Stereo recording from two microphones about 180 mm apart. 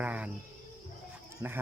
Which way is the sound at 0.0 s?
10° right (ahead or behind).